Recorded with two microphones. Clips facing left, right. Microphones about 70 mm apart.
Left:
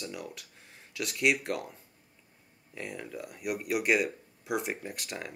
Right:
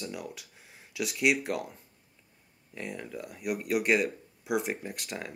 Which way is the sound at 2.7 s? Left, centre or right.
Centre.